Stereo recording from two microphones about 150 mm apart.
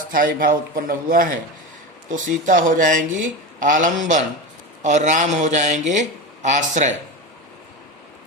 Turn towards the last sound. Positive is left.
turn(degrees=-55)  # may be behind; listen again after turning